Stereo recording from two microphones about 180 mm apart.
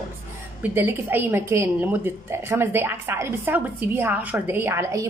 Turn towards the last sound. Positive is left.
turn(degrees=-15)  # may be behind; listen again after turning